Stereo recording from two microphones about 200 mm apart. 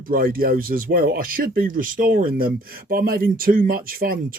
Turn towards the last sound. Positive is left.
turn(degrees=-45)  # may be behind; listen again after turning